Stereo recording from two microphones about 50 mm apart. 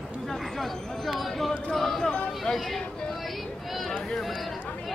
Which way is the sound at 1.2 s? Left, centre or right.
Centre.